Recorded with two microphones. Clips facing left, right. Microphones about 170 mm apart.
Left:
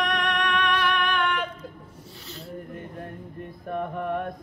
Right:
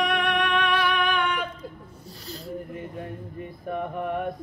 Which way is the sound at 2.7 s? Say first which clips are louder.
Right 2 dB; 5° right (ahead or behind).